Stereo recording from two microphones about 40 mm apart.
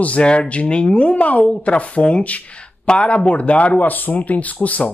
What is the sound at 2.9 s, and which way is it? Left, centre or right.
Speech, left.